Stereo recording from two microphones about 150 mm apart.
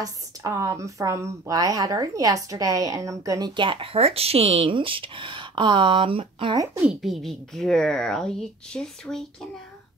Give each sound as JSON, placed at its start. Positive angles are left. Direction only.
{"t": 0.0, "sound": "a woman's voice", "side_deg": -25}
{"t": 6.5, "sound": "a woman's voice", "side_deg": -25}
{"t": 6.8, "sound": "speech", "side_deg": 0}